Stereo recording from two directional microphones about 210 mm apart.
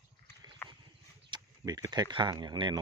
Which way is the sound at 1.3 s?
20° right (ahead or behind).